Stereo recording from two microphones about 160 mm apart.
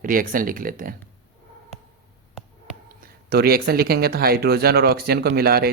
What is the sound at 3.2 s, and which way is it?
Speech, 75° right (ahead or behind).